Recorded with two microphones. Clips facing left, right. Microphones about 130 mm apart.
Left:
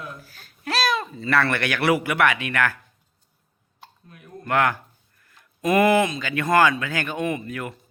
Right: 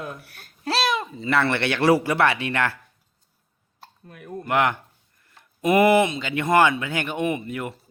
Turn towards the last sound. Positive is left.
turn(degrees=-25)  # may be behind; listen again after turning